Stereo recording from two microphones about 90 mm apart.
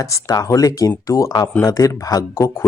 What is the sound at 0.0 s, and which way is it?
Speech, 40° left (ahead or behind).